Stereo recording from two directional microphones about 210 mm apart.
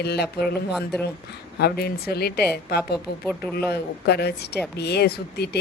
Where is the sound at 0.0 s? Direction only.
50° left (ahead or behind).